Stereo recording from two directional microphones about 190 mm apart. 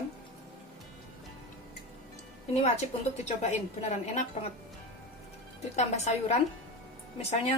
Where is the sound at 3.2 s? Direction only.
35° left (ahead or behind).